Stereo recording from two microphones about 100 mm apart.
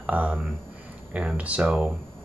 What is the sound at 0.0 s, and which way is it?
Speech, 15° right (ahead or behind).